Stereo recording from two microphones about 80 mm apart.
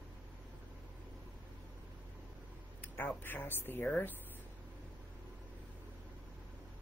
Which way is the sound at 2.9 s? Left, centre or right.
Left.